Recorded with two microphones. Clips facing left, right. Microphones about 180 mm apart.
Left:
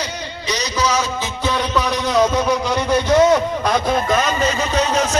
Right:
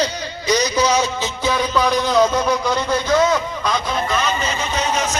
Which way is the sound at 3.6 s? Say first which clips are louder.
Left 4 dB; 55° left (ahead or behind).